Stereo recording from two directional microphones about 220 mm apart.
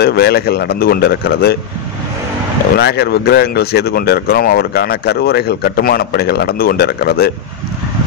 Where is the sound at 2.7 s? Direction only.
45° left (ahead or behind).